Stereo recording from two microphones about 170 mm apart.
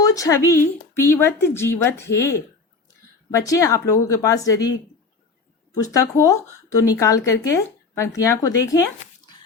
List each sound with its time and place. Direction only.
0.0 s a woman's voice: 20° left (ahead or behind)
5.7 s speech: 20° left (ahead or behind)